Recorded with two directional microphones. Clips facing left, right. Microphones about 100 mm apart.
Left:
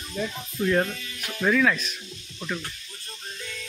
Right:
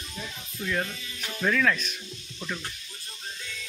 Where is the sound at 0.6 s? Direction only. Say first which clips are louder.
Left 7 dB; 50° left (ahead or behind).